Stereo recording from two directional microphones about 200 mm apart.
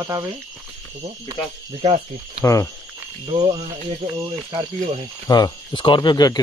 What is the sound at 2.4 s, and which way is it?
Speech, 15° left (ahead or behind).